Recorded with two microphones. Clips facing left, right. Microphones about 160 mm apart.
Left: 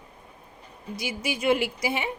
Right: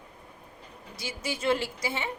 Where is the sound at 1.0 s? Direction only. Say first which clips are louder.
Left 4 dB; 15° left (ahead or behind).